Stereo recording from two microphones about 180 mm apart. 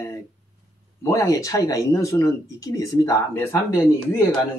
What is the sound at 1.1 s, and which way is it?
Speech, 20° left (ahead or behind).